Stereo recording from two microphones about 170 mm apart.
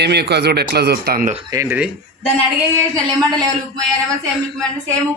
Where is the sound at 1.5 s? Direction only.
20° right (ahead or behind).